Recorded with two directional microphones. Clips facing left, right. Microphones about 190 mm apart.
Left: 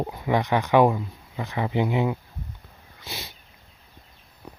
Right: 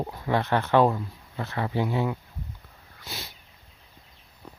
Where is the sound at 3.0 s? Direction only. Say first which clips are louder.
Left 2 dB; 20° left (ahead or behind).